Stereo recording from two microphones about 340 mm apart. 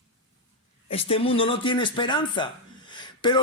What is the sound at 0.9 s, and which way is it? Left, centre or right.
Speech, centre.